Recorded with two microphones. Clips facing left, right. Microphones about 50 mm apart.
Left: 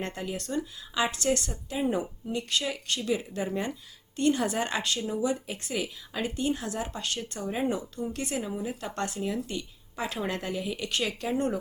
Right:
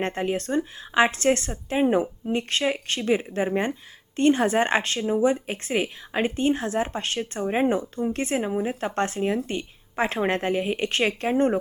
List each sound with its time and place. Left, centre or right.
0.0 s speech: right